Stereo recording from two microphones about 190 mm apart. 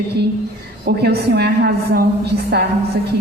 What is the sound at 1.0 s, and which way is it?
A man's voice, 60° right (ahead or behind).